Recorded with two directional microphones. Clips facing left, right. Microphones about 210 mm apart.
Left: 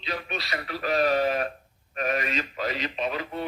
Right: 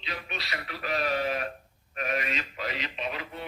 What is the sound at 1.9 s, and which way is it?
Speech, 40° left (ahead or behind).